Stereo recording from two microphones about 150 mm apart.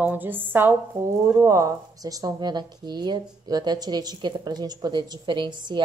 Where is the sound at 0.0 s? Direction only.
15° right (ahead or behind).